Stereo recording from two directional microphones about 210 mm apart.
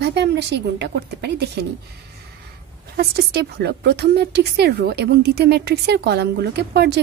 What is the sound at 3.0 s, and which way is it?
A woman's voice, 50° right (ahead or behind).